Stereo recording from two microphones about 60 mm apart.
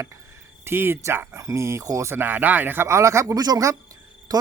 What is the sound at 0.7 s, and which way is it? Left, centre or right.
Speech, right.